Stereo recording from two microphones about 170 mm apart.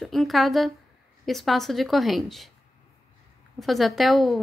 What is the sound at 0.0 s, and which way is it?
Speech, centre (ahead or behind).